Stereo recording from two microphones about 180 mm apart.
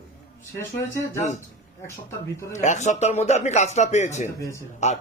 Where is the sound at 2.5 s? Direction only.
40° left (ahead or behind).